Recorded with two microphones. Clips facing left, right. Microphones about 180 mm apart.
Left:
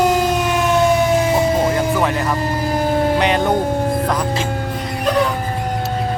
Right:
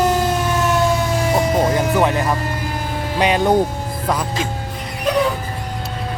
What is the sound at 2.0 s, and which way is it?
Music, 20° right (ahead or behind).